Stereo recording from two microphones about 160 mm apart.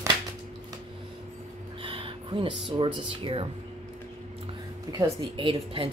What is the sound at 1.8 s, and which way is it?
Speech, 35° right (ahead or behind).